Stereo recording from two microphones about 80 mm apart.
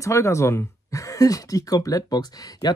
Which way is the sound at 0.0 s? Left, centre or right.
Left.